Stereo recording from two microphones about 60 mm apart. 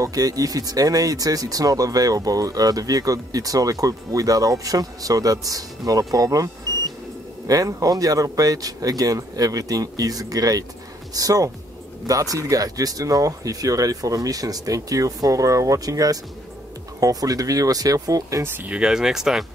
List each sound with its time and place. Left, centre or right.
0.0 s speech: right
7.4 s speech: right
12.1 s speech: right
18.7 s speech: centre